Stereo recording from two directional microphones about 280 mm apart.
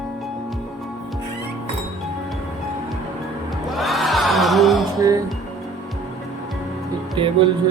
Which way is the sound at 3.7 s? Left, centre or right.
Centre.